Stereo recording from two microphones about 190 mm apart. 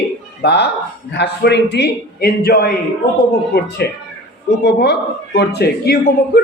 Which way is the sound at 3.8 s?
60° left (ahead or behind).